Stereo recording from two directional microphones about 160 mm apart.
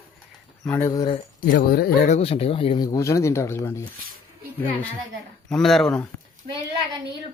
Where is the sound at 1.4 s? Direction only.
70° left (ahead or behind).